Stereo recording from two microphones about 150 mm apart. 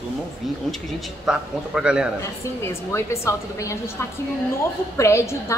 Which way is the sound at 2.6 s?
20° left (ahead or behind).